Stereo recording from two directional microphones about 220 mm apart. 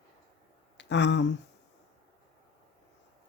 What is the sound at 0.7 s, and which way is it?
Speech, 55° left (ahead or behind).